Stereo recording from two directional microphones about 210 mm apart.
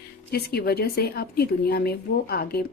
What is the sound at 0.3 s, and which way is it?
Speech, 50° left (ahead or behind).